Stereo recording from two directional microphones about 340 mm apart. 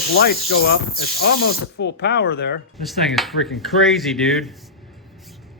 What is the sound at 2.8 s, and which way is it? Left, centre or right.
Speech, centre.